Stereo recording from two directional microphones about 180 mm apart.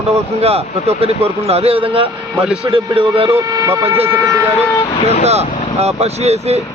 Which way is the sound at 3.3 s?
15° right (ahead or behind).